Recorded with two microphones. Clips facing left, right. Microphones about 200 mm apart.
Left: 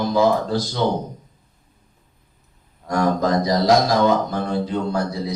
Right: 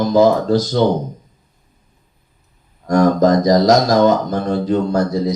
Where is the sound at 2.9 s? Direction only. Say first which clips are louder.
Right 7 dB; 45° right (ahead or behind).